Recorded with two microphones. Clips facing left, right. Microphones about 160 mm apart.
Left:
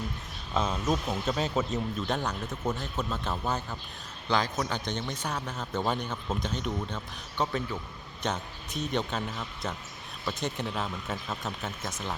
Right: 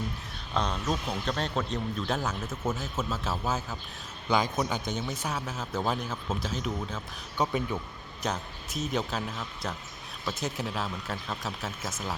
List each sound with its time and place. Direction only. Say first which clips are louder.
0.5 s speech: left 2 dB; 5° left (ahead or behind)
4.3 s a man's voice: right 1 dB; 15° right (ahead or behind)
4.9 s speech: right 1 dB; 5° right (ahead or behind)
7.4 s a man's voice: right 2 dB; 15° right (ahead or behind)
8.2 s speech: even; centre (ahead or behind)